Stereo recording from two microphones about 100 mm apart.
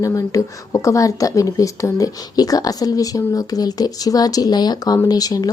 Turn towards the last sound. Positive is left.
turn(degrees=40)  # may be behind; listen again after turning